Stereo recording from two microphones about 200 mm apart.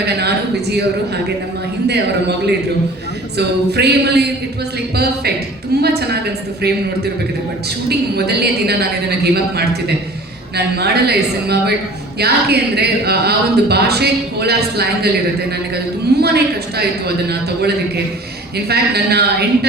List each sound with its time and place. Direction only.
0.0 s a man's voice: 55° right (ahead or behind)
3.3 s a sound: 55° right (ahead or behind)
5.8 s speech: 55° right (ahead or behind)
7.9 s speech: 55° right (ahead or behind)